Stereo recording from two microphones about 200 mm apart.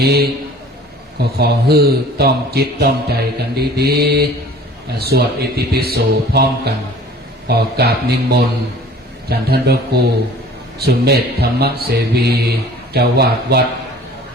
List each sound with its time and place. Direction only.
0.0 s speech: 55° right (ahead or behind)
1.4 s speech: 55° right (ahead or behind)